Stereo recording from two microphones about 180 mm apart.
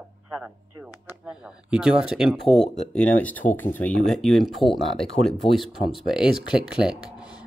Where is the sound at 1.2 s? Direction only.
5° right (ahead or behind).